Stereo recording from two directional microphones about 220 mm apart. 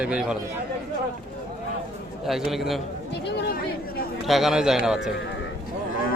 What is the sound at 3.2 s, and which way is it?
Speech, 50° left (ahead or behind).